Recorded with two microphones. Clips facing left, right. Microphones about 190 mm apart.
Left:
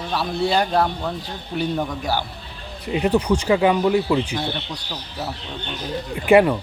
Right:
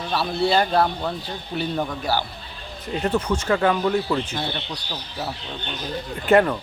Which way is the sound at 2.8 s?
15° left (ahead or behind).